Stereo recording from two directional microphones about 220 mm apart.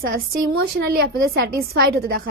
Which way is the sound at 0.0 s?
45° right (ahead or behind).